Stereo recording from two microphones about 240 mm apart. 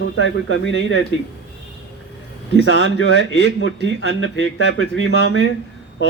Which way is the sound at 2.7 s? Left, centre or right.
Left.